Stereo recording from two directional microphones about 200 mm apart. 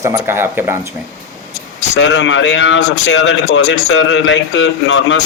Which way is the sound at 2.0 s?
60° left (ahead or behind).